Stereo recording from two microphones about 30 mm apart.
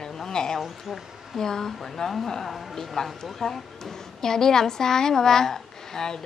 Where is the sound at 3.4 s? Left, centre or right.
Left.